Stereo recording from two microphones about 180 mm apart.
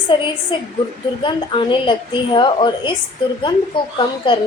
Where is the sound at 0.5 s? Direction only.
25° left (ahead or behind).